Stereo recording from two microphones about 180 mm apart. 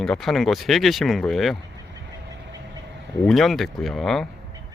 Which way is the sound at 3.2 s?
Centre (ahead or behind).